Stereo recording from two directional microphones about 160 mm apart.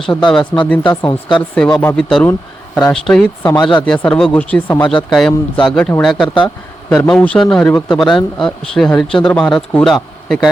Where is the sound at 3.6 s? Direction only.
30° left (ahead or behind).